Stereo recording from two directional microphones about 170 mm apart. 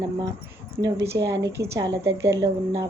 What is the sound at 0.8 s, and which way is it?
A woman's voice, 20° right (ahead or behind).